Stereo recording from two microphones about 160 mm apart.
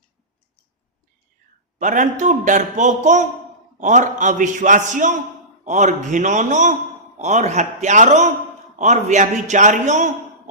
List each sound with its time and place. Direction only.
1.8 s a man's voice: 50° right (ahead or behind)